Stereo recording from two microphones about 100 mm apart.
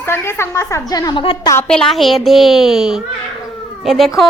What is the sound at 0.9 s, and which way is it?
Child singing, 40° left (ahead or behind).